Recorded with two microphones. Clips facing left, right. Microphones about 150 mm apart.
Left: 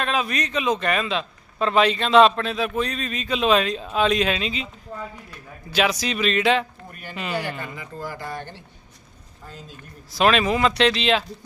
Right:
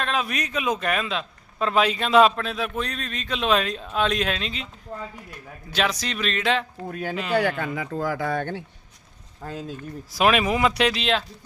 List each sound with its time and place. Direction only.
0.0 s a man's voice: centre (ahead or behind)
5.7 s a man's voice: 5° left (ahead or behind)
7.6 s speech: 85° right
9.4 s speech: 90° right
10.2 s speech: 10° right (ahead or behind)